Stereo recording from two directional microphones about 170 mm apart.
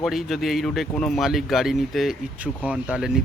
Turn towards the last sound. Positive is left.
turn(degrees=-5)  # may be behind; listen again after turning